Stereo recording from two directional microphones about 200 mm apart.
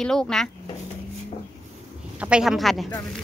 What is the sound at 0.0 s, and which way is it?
Speech, 5° left (ahead or behind).